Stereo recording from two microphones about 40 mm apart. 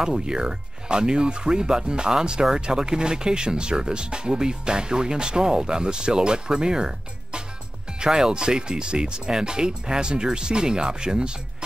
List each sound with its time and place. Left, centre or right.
0.0 s speech: centre
8.0 s speech: centre